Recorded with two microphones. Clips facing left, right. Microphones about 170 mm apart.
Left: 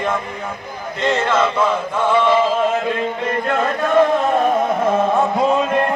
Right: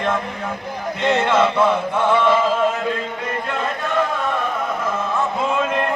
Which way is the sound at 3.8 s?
45° left (ahead or behind).